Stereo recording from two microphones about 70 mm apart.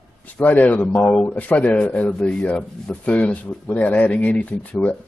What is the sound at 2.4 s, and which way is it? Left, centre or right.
Speech, left.